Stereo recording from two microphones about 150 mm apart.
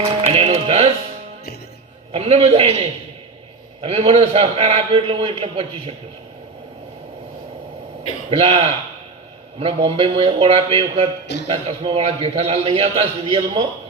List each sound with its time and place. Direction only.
0.0 s music: 40° right (ahead or behind)
2.1 s a man's voice: 45° right (ahead or behind)
8.3 s a man's voice: 40° right (ahead or behind)